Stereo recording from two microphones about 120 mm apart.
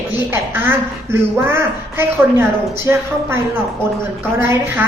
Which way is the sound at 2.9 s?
20° right (ahead or behind).